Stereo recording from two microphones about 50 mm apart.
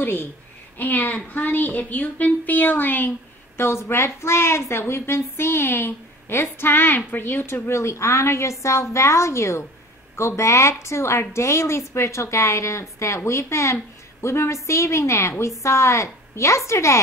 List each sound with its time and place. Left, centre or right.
0.0 s a woman's voice: left
3.5 s a woman's voice: left
7.6 s a woman's voice: left